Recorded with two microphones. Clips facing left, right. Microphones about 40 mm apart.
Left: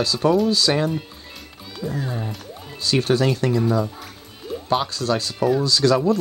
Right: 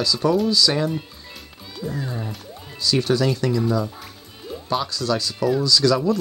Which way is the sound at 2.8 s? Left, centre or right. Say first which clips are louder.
Left 1 dB; left.